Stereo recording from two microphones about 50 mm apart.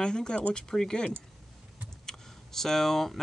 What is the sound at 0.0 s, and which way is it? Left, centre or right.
Speech, centre.